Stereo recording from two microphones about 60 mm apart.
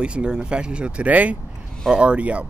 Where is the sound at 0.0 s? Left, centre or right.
Centre.